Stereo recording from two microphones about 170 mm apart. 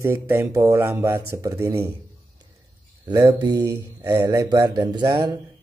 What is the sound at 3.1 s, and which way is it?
Speech, 20° right (ahead or behind).